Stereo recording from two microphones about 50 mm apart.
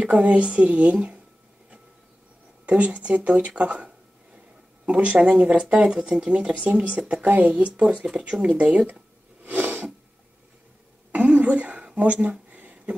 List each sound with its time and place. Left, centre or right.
0.0 s speech: right
2.6 s speech: right
9.4 s snort: right
11.1 s a sound: right